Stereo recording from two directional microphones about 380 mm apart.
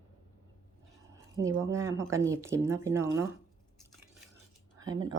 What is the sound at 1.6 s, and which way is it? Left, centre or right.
Speech, centre.